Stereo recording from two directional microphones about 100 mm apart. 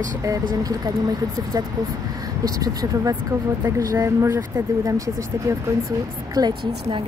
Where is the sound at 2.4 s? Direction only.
35° right (ahead or behind).